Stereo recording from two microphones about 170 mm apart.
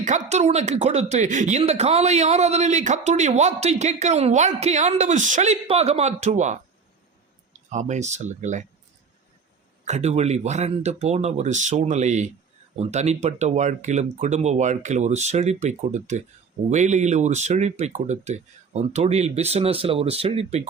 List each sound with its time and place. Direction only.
0.0 s speech: 45° right (ahead or behind)
7.7 s speech: 45° right (ahead or behind)
9.8 s speech: 40° right (ahead or behind)